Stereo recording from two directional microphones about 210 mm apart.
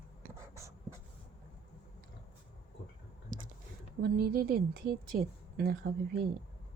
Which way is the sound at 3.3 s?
40° right (ahead or behind).